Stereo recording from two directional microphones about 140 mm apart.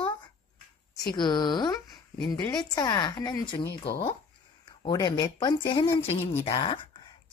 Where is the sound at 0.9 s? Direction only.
30° left (ahead or behind).